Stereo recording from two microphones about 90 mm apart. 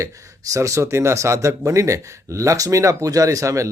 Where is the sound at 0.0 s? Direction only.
35° right (ahead or behind).